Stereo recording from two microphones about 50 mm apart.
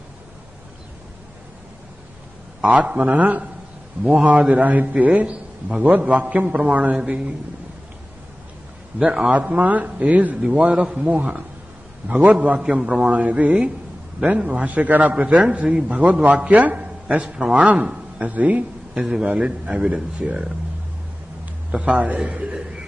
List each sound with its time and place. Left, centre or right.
2.7 s a man's voice: right
9.0 s a man's voice: right
12.5 s a man's voice: right
15.1 s a man's voice: right
18.9 s a man's voice: centre
19.2 s a man's voice: right
21.7 s a man's voice: right
22.5 s a sound: centre